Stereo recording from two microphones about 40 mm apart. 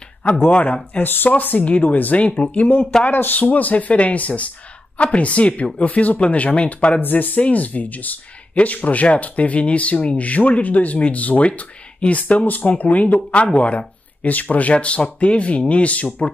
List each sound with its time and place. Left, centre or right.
0.5 s speech: left
1.0 s speech: left
1.3 s speech: left
3.1 s speech: left
7.0 s speech: left